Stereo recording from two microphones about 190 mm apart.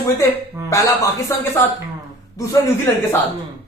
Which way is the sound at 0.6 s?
15° left (ahead or behind).